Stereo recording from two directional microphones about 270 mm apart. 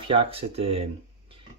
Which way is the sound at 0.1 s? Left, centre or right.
Right.